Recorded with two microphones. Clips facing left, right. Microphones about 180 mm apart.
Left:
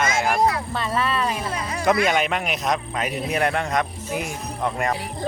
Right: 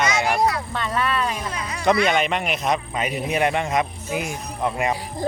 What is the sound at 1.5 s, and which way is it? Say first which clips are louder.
Speech: left 3 dB; 45° left (ahead or behind).